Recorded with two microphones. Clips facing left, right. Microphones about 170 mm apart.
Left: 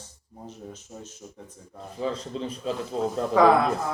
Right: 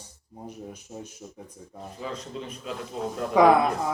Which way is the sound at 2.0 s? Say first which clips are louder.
Left 6 dB; 30° left (ahead or behind).